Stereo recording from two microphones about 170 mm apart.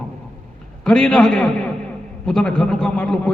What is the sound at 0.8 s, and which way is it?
A man's voice, 5° left (ahead or behind).